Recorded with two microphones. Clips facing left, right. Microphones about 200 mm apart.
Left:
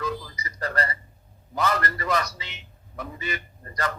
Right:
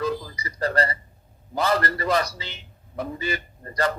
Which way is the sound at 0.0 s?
30° right (ahead or behind).